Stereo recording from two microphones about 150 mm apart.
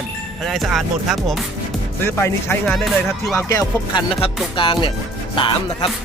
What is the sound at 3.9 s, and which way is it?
Speech, 35° left (ahead or behind).